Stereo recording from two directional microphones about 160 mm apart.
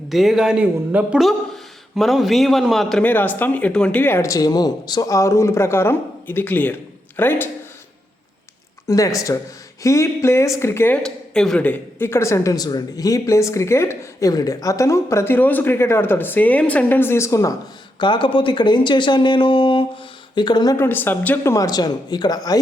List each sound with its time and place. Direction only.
0.1 s speech: centre (ahead or behind)
3.0 s a woman's voice: 10° left (ahead or behind)
8.9 s a woman's voice: 20° left (ahead or behind)
18.0 s speech: 30° left (ahead or behind)
20.8 s speech: 10° left (ahead or behind)